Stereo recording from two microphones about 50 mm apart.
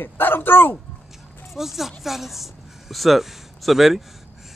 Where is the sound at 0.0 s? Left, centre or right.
Left.